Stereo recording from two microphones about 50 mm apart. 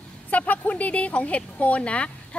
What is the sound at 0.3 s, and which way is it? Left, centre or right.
Speech, left.